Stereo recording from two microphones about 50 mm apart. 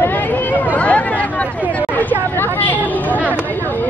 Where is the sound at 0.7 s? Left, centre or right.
Left.